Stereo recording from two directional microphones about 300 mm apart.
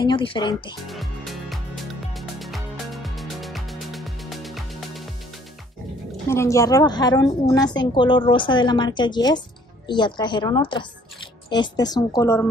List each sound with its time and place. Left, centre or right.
0.0 s a woman's voice: centre
0.8 s music: centre
6.2 s a woman's voice: centre